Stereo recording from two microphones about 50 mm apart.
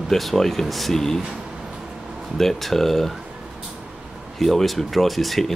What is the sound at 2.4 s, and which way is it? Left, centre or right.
Speech, centre.